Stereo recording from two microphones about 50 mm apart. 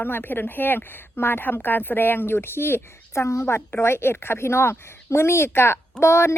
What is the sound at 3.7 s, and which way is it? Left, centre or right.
A woman's voice, left.